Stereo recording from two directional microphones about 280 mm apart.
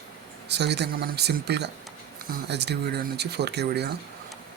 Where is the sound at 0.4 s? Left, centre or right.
Right.